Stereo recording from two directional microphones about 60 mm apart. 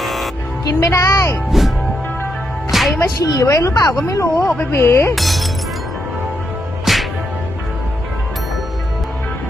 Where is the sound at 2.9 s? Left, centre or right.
Left.